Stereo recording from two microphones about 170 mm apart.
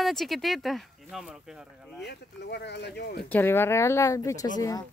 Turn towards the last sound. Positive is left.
turn(degrees=20)  # may be behind; listen again after turning